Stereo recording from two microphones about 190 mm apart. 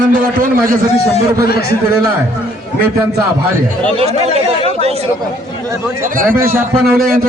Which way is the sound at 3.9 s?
30° right (ahead or behind).